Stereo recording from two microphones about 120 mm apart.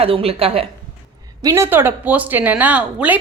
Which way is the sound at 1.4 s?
20° right (ahead or behind).